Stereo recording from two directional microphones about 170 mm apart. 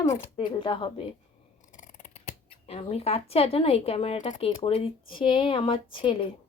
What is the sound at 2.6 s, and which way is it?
A woman's voice, 35° left (ahead or behind).